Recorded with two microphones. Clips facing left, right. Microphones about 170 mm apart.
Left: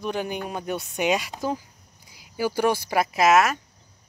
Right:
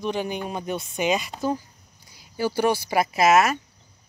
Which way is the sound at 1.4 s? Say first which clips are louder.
Right 5 dB; 10° left (ahead or behind).